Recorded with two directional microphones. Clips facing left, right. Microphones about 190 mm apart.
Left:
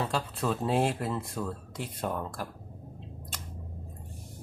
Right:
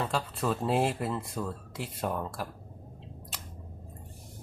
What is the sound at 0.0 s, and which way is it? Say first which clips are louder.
Speech: even; centre (ahead or behind).